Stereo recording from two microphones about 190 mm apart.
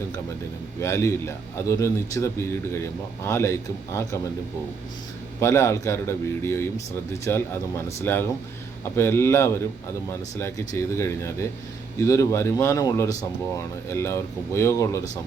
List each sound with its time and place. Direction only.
0.8 s a man's voice: 15° left (ahead or behind)
5.4 s a man's voice: 15° left (ahead or behind)